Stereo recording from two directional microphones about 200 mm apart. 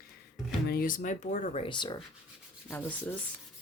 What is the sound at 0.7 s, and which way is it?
Speech, 45° left (ahead or behind).